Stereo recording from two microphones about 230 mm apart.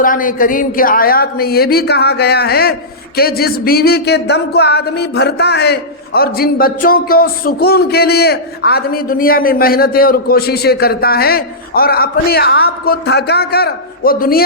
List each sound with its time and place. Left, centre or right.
0.0 s speech: left